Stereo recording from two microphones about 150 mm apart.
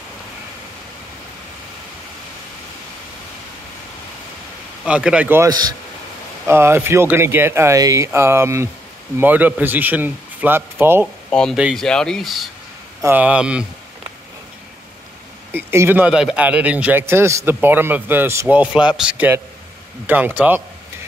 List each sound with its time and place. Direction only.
4.8 s speech: 5° right (ahead or behind)
11.2 s speech: 5° left (ahead or behind)
13.0 s speech: 10° right (ahead or behind)
15.5 s speech: 15° right (ahead or behind)